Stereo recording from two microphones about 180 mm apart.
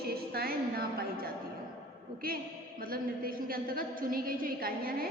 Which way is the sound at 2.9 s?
55° right (ahead or behind).